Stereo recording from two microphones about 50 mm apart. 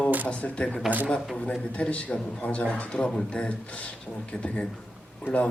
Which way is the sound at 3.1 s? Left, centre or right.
Centre.